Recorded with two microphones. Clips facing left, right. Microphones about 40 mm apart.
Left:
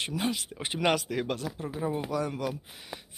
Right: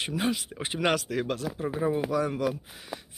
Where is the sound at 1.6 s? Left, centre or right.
Centre.